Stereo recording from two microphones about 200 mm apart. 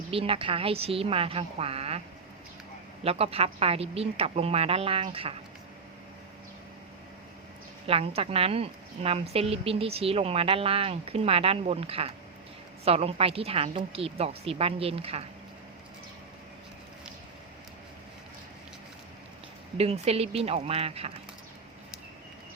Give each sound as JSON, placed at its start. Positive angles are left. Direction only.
{"t": 0.1, "sound": "a woman's voice", "side_deg": -25}
{"t": 3.0, "sound": "a woman's voice", "side_deg": -30}
{"t": 7.9, "sound": "a woman's voice", "side_deg": -30}
{"t": 19.7, "sound": "a woman's voice", "side_deg": -30}